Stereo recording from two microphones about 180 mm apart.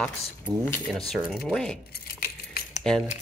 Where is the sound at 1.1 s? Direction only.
Centre (ahead or behind).